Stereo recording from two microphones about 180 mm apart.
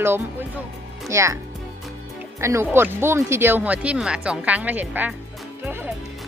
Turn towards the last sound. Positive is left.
turn(degrees=-10)  # may be behind; listen again after turning